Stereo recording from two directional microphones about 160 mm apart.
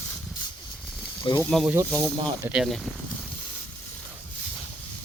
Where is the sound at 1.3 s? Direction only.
30° left (ahead or behind).